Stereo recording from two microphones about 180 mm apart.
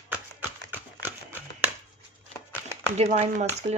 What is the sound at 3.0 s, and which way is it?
Speech, 35° right (ahead or behind).